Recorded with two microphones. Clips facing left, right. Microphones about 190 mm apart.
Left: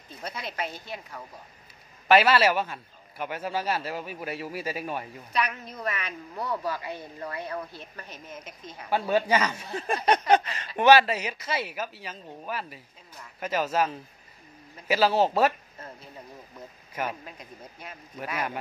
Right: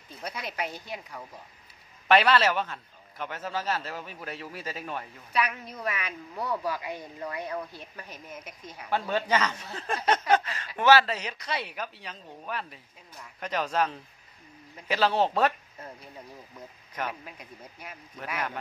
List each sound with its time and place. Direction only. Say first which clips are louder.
0.2 s speech: even; 10° right (ahead or behind)
2.0 s a man's voice: left 2 dB; 5° left (ahead or behind)
5.3 s speech: even; 5° right (ahead or behind)
8.9 s a man's voice: left 3 dB; 10° left (ahead or behind)
10.0 s a sound: left 2 dB; 15° left (ahead or behind)
10.8 s speech: left 3 dB; 15° left (ahead or behind)
17.2 s speech: left 1 dB; 10° right (ahead or behind)
18.1 s a man's voice: left 2 dB; 10° left (ahead or behind)